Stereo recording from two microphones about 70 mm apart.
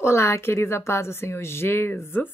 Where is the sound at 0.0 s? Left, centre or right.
Left.